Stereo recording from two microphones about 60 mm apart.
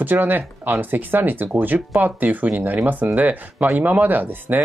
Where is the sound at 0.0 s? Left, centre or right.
Right.